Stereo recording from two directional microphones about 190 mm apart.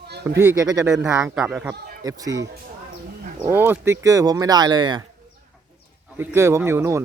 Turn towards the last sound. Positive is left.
turn(degrees=-15)  # may be behind; listen again after turning